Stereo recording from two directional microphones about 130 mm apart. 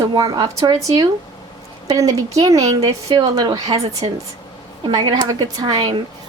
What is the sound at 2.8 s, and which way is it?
Speech, 45° right (ahead or behind).